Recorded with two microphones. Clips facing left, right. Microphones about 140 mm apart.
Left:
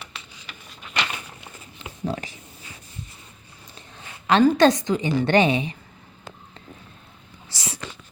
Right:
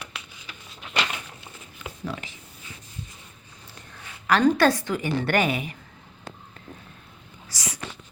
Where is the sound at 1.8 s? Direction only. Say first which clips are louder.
Left 5 dB; 30° left (ahead or behind).